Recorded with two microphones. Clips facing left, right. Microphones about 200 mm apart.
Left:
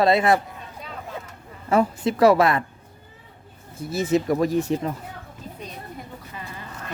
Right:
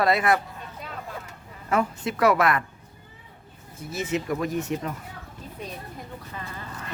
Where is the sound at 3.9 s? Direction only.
35° left (ahead or behind).